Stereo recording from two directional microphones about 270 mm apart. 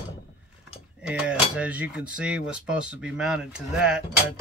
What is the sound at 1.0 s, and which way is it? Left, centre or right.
Cutlery, centre.